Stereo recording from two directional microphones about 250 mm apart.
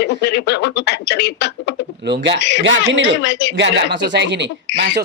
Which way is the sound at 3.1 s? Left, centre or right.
Left.